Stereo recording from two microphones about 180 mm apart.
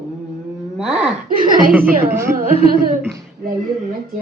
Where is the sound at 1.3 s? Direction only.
50° right (ahead or behind).